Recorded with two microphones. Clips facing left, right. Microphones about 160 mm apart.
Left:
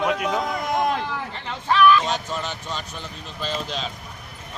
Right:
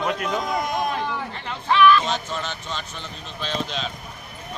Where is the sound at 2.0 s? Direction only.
10° left (ahead or behind).